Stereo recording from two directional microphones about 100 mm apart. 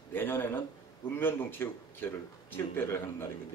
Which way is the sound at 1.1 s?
20° left (ahead or behind).